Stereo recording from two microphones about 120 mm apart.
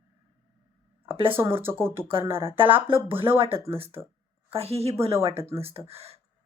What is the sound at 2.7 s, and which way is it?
Speech, 45° right (ahead or behind).